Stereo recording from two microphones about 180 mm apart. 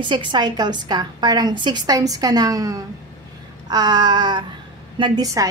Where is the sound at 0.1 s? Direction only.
25° right (ahead or behind).